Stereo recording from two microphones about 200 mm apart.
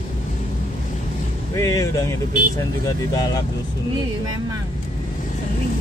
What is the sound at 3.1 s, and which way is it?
Speech, 20° left (ahead or behind).